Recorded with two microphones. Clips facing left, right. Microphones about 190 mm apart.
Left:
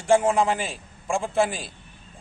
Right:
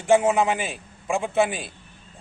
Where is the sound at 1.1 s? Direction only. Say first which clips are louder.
Right 1 dB; 5° right (ahead or behind).